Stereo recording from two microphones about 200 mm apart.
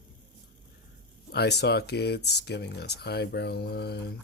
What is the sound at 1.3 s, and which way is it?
Speech, 55° left (ahead or behind).